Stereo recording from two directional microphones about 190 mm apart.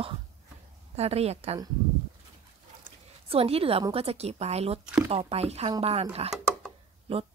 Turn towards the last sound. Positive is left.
turn(degrees=-30)  # may be behind; listen again after turning